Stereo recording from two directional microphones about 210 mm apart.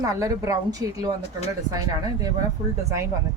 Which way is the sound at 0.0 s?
15° right (ahead or behind).